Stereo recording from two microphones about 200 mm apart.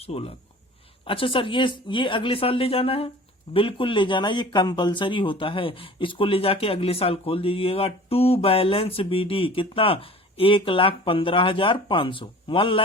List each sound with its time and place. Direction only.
0.0 s speech: 30° left (ahead or behind)